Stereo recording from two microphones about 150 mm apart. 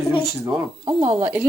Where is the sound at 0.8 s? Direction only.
35° right (ahead or behind).